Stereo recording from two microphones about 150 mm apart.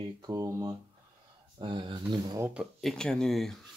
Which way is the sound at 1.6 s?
30° right (ahead or behind).